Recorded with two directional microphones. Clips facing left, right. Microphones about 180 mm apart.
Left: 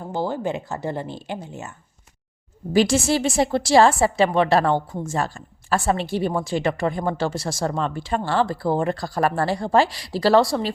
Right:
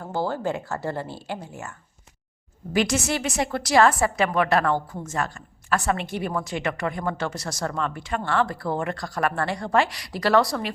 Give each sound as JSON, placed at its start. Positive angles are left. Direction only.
{"t": 0.0, "sound": "speech", "side_deg": 15}
{"t": 2.7, "sound": "a woman's voice", "side_deg": 30}